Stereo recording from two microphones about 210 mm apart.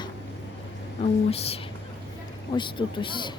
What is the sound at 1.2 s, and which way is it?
A woman's voice, 30° left (ahead or behind).